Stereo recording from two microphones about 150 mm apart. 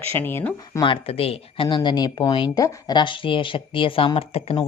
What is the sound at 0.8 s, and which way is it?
Speech, 35° left (ahead or behind).